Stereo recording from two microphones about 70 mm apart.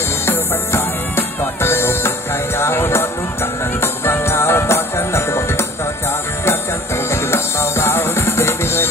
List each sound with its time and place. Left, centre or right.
0.3 s music: left
7.1 s music: left